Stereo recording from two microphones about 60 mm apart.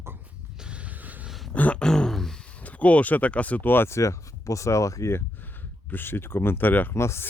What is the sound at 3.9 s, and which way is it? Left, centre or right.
Speech, left.